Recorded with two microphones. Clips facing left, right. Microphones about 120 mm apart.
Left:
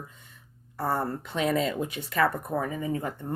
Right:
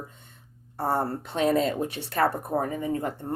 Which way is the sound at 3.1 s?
30° right (ahead or behind).